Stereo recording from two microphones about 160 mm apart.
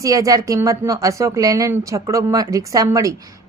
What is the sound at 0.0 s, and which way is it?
Speech, 20° right (ahead or behind).